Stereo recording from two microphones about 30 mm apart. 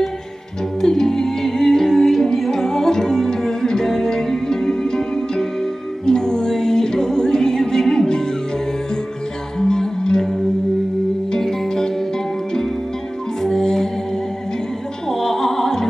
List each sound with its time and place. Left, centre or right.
0.7 s music: centre
9.6 s music: left
11.3 s music: centre
13.4 s music: centre
15.0 s music: centre